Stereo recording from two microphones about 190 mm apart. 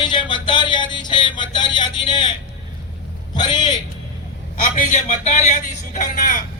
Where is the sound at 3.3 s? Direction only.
25° left (ahead or behind).